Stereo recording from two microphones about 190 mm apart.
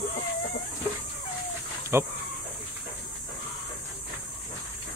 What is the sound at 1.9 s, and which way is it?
Speech, 15° right (ahead or behind).